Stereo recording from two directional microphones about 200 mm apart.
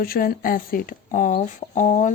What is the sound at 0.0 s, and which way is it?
Speech, 50° left (ahead or behind).